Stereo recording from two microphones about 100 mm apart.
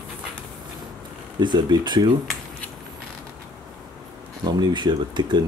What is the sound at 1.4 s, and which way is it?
Speech, 45° right (ahead or behind).